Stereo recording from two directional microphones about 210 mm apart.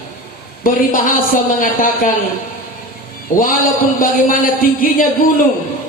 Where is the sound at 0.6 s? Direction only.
40° left (ahead or behind).